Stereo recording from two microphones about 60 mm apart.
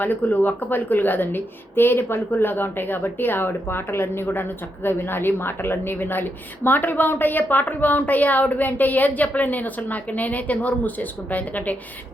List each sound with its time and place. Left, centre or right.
0.0 s a woman's voice: left